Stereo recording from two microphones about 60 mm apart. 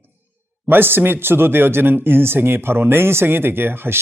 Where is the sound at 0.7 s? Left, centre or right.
Right.